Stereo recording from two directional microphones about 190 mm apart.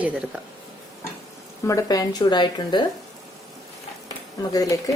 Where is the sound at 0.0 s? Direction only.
5° right (ahead or behind).